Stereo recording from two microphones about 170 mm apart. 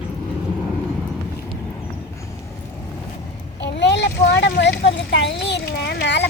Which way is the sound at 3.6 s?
90° left.